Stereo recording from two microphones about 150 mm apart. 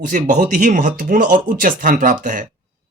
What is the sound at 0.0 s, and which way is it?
Speech, 60° right (ahead or behind).